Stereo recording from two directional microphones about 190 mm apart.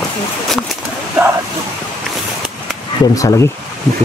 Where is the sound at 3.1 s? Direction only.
15° left (ahead or behind).